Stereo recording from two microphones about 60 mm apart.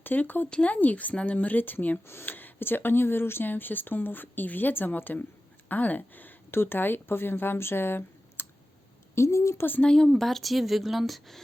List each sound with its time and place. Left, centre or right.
0.0 s a woman's voice: left
9.1 s a woman's voice: left
9.8 s a woman's voice: centre